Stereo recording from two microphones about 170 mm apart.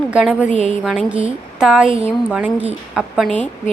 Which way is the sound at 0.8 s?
5° right (ahead or behind).